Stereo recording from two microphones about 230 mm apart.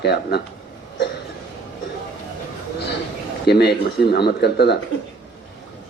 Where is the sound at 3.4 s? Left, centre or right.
Left.